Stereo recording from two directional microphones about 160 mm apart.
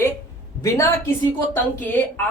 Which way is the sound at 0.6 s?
20° left (ahead or behind).